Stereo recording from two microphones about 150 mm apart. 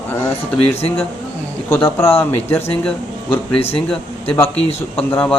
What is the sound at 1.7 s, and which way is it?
A man's voice, 15° left (ahead or behind).